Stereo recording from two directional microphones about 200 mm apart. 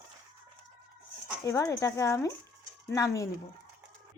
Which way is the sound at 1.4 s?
15° left (ahead or behind).